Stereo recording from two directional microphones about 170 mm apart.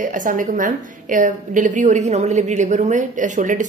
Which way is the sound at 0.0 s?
50° right (ahead or behind).